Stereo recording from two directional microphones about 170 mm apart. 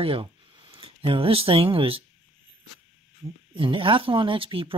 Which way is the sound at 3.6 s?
30° right (ahead or behind).